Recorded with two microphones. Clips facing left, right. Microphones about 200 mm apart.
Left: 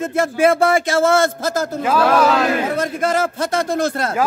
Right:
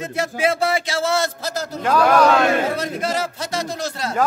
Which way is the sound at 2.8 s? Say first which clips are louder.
Left 5 dB; 50° left (ahead or behind).